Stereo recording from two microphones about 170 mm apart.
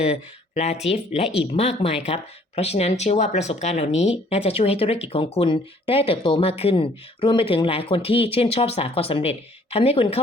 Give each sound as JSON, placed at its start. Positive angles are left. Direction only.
{"t": 0.0, "sound": "speech", "side_deg": 40}